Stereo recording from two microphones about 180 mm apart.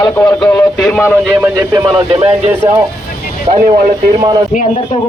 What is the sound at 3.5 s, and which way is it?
Speech, 30° right (ahead or behind).